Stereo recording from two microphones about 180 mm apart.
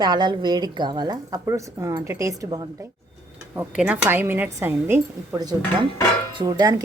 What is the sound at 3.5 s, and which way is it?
Speech, 5° right (ahead or behind).